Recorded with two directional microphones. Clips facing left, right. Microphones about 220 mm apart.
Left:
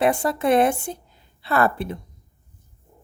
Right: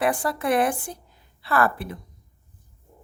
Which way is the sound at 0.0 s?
25° left (ahead or behind).